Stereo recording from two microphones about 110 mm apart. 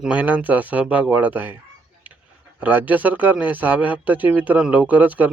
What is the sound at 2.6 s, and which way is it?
A man's voice, 15° right (ahead or behind).